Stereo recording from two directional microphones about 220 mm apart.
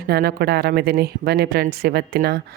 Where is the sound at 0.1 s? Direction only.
45° right (ahead or behind).